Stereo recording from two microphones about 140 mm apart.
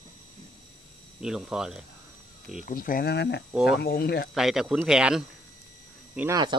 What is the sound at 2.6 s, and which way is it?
Speech, 85° left.